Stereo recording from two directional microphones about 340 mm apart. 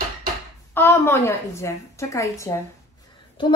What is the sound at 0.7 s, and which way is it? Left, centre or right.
A woman's voice, centre.